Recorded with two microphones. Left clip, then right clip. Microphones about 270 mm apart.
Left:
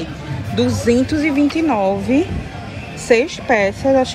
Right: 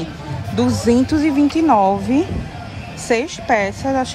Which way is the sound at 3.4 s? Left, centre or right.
Right.